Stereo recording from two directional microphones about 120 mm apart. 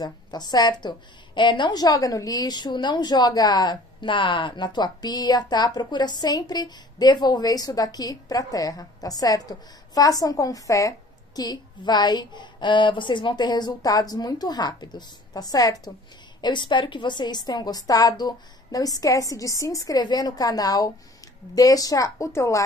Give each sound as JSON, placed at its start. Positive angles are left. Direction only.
{"t": 0.0, "sound": "a woman's voice", "side_deg": 35}